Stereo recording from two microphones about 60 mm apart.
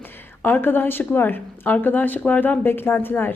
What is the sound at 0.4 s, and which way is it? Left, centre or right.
A woman's voice, left.